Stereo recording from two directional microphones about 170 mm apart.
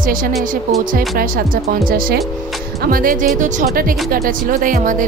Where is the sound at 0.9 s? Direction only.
60° right (ahead or behind).